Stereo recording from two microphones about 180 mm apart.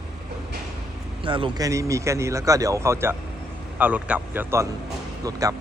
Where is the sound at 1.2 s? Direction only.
30° right (ahead or behind).